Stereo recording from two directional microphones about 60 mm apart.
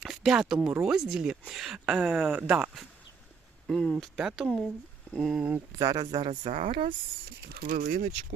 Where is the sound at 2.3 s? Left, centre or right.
Right.